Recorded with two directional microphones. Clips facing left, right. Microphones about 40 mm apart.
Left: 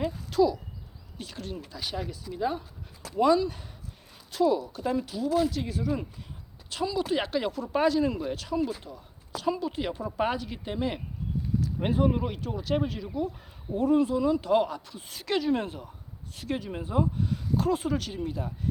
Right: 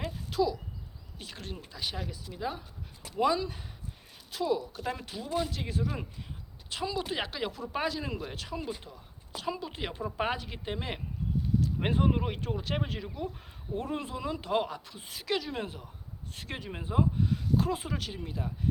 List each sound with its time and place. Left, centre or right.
0.3 s speech: centre
1.2 s speech: right
1.7 s speech: centre
3.2 s speech: centre
4.9 s speech: right
6.7 s speech: centre
7.2 s speech: centre
9.7 s speech: right; by 15.9 s centre
16.3 s speech: right
16.6 s speech: centre